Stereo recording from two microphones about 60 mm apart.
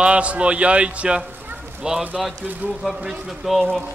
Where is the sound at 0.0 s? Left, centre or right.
Right.